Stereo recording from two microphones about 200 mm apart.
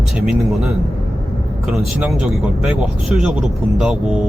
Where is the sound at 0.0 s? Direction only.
Centre (ahead or behind).